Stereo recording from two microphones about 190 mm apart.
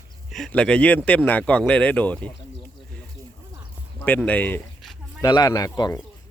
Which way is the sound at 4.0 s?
10° left (ahead or behind).